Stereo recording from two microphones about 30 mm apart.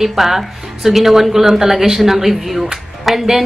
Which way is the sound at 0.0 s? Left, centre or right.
Centre.